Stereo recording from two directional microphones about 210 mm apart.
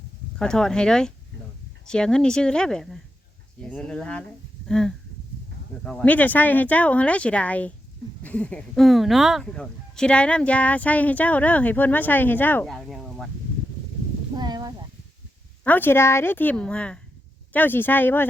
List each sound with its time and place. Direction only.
0.3 s speech: 5° left (ahead or behind)
14.3 s a sound: 20° right (ahead or behind)
15.6 s speech: 10° left (ahead or behind)